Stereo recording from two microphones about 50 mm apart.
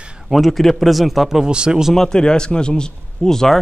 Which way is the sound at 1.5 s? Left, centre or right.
Centre.